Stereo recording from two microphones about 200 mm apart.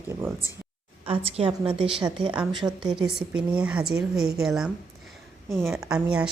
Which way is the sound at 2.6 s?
15° right (ahead or behind).